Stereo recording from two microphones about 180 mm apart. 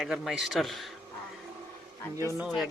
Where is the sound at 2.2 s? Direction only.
15° right (ahead or behind).